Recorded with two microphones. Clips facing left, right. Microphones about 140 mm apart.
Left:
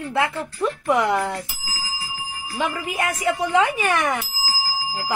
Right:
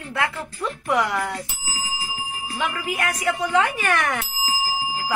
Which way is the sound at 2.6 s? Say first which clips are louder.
Left 2 dB; 20° left (ahead or behind).